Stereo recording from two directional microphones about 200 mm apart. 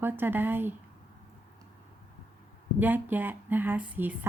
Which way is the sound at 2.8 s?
10° right (ahead or behind).